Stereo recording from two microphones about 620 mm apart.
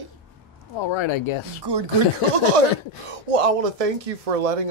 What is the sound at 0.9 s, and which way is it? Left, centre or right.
Speech, left.